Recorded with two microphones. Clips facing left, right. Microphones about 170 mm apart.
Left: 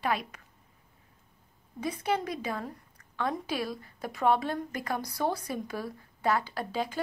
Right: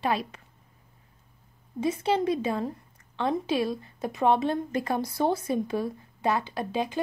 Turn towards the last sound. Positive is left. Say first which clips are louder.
# right 3 dB
turn(degrees=-20)  # may be behind; listen again after turning